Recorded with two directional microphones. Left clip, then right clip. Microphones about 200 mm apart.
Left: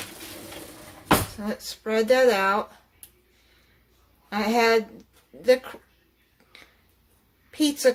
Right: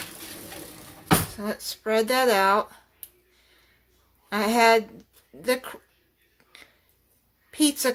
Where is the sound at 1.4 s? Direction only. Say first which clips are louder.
Right 1 dB; 25° right (ahead or behind).